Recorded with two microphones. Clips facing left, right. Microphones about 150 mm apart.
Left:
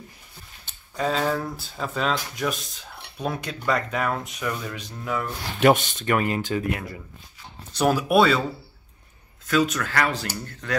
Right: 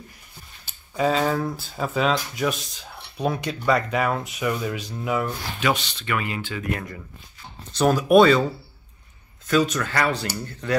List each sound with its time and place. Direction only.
0.7 s speech: 5° right (ahead or behind)
5.6 s speech: 50° left (ahead or behind)
7.7 s speech: 10° left (ahead or behind)
9.5 s speech: centre (ahead or behind)